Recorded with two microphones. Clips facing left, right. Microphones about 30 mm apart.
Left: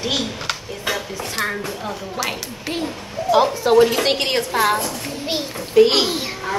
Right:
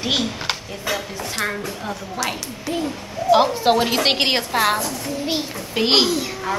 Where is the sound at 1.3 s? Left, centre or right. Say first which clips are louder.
Left 1 dB; centre.